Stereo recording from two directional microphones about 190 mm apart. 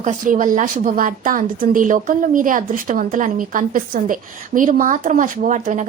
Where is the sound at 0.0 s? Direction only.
40° right (ahead or behind).